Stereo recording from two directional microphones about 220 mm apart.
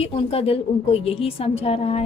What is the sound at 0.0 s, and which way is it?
A woman's voice, 25° left (ahead or behind).